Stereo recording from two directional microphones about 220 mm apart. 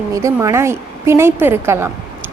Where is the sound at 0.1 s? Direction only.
15° right (ahead or behind).